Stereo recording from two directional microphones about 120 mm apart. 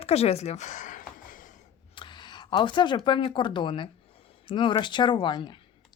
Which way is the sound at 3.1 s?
45° left (ahead or behind).